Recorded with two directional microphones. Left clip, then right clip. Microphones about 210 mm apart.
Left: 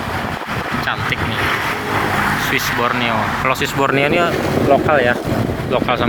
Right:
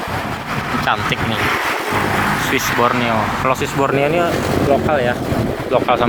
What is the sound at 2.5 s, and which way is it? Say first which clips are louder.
Speech: right 1 dB; 15° right (ahead or behind).